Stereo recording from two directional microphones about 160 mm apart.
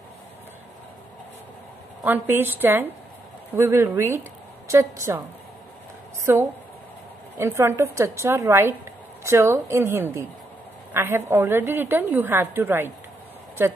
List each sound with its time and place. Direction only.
2.0 s a woman's voice: 15° right (ahead or behind)
6.3 s a woman's voice: 15° right (ahead or behind)